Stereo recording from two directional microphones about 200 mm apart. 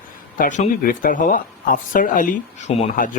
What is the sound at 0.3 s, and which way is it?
Speech, 40° left (ahead or behind).